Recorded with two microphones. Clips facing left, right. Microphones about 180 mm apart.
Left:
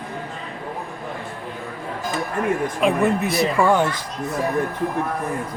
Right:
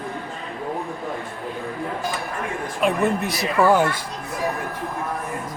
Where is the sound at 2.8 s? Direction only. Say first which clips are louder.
Even; centre (ahead or behind).